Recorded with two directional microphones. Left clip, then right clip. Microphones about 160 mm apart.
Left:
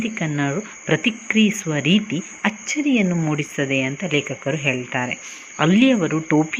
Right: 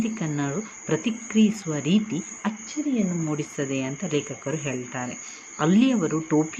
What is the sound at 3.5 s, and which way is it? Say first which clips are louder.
Speech: left 7 dB; 15° left (ahead or behind).